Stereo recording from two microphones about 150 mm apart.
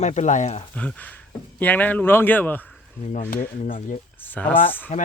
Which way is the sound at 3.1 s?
60° left (ahead or behind).